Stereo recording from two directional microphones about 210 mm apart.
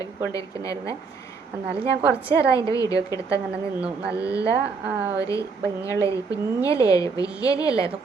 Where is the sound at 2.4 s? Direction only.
15° left (ahead or behind).